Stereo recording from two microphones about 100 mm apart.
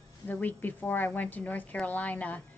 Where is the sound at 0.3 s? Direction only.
20° left (ahead or behind).